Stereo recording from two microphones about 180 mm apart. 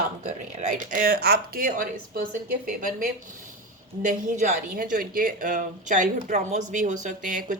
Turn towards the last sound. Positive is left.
turn(degrees=-45)  # may be behind; listen again after turning